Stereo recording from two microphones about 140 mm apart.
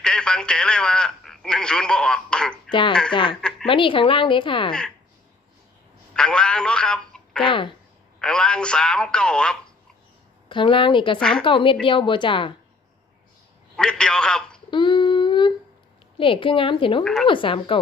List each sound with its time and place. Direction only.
0.0 s speech: 5° left (ahead or behind)
3.1 s a woman's voice: 35° left (ahead or behind)
6.1 s speech: 5° left (ahead or behind)
10.5 s a woman's voice: 35° left (ahead or behind)
11.2 s speech: 5° left (ahead or behind)
11.4 s a woman's voice: 35° left (ahead or behind)
13.7 s speech: 5° left (ahead or behind)
14.7 s humming: 35° left (ahead or behind)
16.1 s a woman's voice: 40° left (ahead or behind)
17.0 s speech: 5° left (ahead or behind)
17.2 s a woman's voice: 35° left (ahead or behind)